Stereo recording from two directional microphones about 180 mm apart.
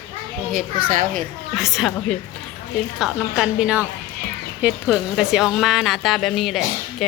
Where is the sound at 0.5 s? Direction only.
50° right (ahead or behind).